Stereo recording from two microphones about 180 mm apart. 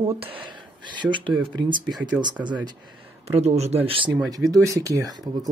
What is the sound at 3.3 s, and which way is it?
Speech, 35° right (ahead or behind).